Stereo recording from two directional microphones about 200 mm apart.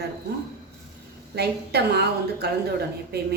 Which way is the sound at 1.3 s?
55° right (ahead or behind).